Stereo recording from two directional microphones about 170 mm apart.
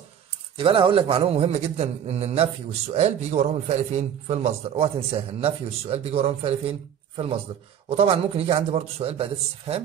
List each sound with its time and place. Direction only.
0.6 s a man's voice: 30° right (ahead or behind)
7.9 s a man's voice: 35° right (ahead or behind)